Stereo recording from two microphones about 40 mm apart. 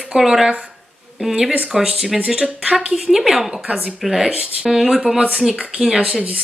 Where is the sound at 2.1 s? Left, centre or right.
Right.